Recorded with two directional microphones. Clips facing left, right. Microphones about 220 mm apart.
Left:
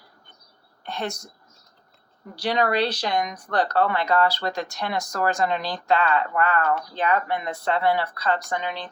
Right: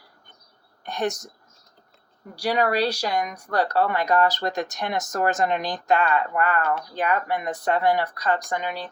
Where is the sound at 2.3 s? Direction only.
10° right (ahead or behind).